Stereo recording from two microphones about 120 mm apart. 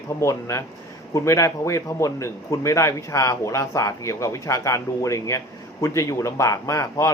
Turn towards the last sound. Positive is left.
turn(degrees=25)  # may be behind; listen again after turning